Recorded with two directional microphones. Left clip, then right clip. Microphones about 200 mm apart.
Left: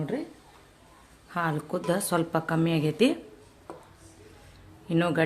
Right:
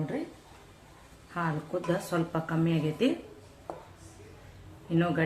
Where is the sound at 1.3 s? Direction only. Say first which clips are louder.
Left 3 dB; 60° left (ahead or behind).